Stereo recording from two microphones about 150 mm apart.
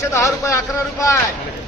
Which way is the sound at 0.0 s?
20° left (ahead or behind).